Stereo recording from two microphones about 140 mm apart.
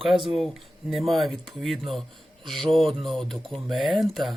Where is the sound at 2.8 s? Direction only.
35° right (ahead or behind).